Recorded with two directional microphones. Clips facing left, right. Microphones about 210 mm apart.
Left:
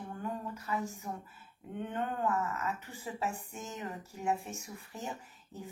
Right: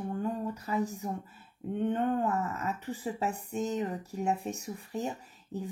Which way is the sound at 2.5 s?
35° right (ahead or behind).